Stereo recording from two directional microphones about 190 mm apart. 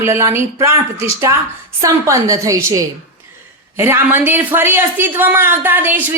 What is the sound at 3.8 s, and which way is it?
A woman's voice, 10° right (ahead or behind).